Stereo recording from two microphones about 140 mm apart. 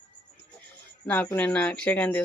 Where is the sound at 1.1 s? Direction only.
15° left (ahead or behind).